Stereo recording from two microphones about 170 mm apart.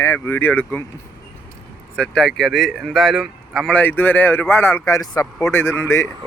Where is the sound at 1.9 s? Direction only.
5° left (ahead or behind).